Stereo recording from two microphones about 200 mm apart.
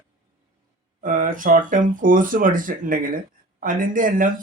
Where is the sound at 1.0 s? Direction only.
40° right (ahead or behind).